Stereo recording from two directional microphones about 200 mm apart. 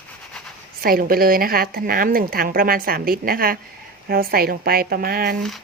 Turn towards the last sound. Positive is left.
turn(degrees=-50)  # may be behind; listen again after turning